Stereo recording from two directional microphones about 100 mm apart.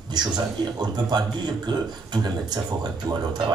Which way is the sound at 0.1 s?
45° right (ahead or behind).